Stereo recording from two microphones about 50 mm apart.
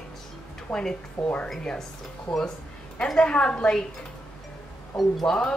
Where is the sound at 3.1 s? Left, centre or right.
Centre.